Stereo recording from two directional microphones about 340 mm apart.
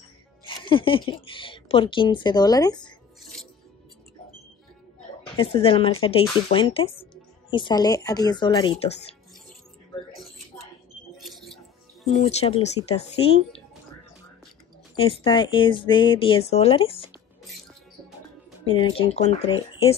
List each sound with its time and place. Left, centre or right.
0.5 s speech: centre
3.2 s music: centre
5.2 s speech: centre
11.1 s music: centre
12.1 s speech: centre
15.0 s speech: centre
18.7 s speech: centre